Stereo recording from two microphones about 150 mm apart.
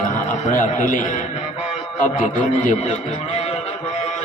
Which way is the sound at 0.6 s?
60° left (ahead or behind).